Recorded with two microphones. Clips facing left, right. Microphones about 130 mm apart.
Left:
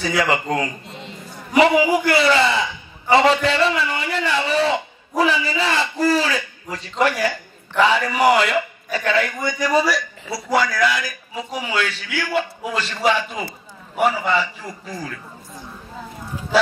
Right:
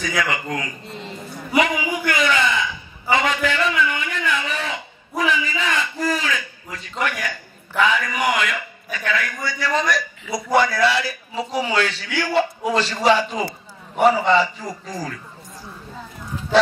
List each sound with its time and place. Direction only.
0.0 s a man's voice: 30° left (ahead or behind)
9.4 s a man's voice: 15° left (ahead or behind)
10.3 s a man's voice: 25° right (ahead or behind)